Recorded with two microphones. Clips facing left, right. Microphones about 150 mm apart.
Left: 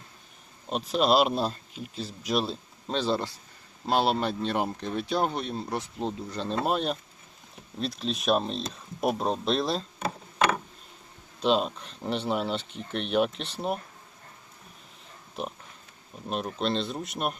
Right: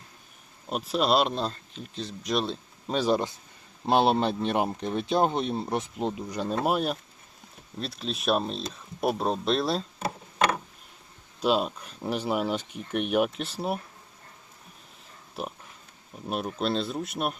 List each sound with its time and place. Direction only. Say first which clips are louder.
0.7 s speech: left 1 dB; centre (ahead or behind)
2.9 s speech: right 3 dB; 10° right (ahead or behind)
11.3 s speech: even; 5° right (ahead or behind)
15.4 s speech: even; 5° right (ahead or behind)